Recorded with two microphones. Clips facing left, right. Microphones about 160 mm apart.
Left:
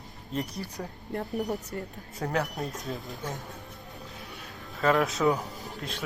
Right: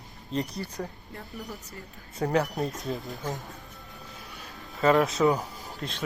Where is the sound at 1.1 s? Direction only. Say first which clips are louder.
Left 11 dB; 55° left (ahead or behind).